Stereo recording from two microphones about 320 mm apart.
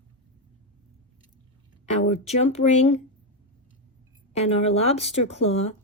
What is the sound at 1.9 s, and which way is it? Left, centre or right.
Speech, left.